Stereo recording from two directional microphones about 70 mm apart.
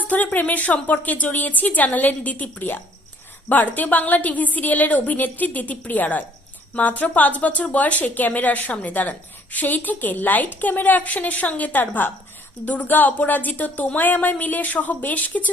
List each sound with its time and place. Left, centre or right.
0.1 s a woman's voice: left
3.8 s a woman's voice: left